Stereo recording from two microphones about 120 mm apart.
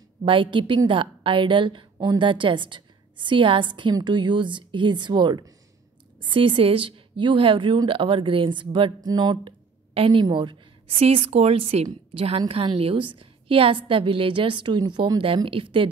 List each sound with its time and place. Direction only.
0.2 s a woman's voice: 45° right (ahead or behind)
11.0 s a woman's voice: 55° right (ahead or behind)